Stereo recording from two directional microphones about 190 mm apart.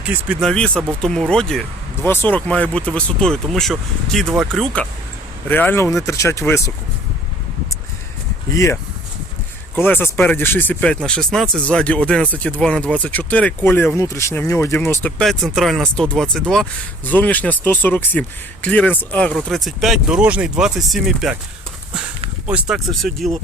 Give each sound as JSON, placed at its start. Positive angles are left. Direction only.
{"t": 0.0, "sound": "speech", "side_deg": -10}
{"t": 0.4, "sound": "speech", "side_deg": 5}
{"t": 8.5, "sound": "speech", "side_deg": 15}
{"t": 22.4, "sound": "speech", "side_deg": -5}